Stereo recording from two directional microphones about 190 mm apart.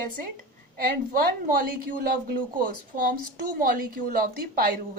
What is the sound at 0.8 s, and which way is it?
Speech, 50° right (ahead or behind).